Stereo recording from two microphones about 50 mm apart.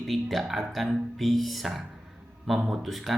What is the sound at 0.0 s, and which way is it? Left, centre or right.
Speech, centre.